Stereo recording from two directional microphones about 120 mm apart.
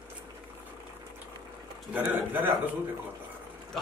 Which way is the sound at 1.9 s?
15° right (ahead or behind).